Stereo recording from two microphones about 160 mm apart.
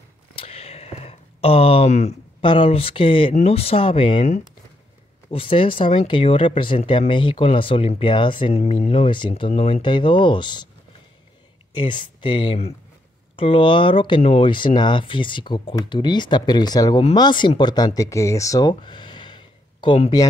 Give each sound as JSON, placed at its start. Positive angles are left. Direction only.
{"t": 0.4, "sound": "a sound", "side_deg": 40}
{"t": 2.4, "sound": "speech", "side_deg": 30}
{"t": 11.7, "sound": "speech", "side_deg": 30}